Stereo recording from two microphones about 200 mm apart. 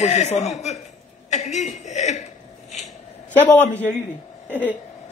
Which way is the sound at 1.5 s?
35° left (ahead or behind).